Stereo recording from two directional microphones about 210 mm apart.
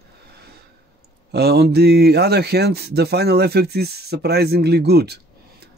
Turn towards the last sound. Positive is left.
turn(degrees=-50)  # may be behind; listen again after turning